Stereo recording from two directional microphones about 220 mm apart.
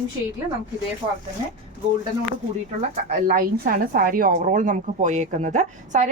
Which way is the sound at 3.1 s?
35° right (ahead or behind).